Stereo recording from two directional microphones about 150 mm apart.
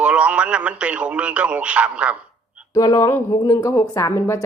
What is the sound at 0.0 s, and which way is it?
A man's voice, 10° right (ahead or behind).